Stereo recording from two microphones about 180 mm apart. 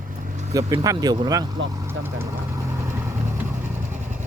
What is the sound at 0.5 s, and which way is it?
Speech, 20° right (ahead or behind).